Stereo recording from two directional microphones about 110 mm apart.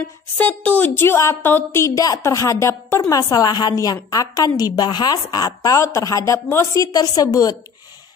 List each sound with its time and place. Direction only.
0.4 s a woman's voice: 15° left (ahead or behind); by 7.5 s 35° left (ahead or behind)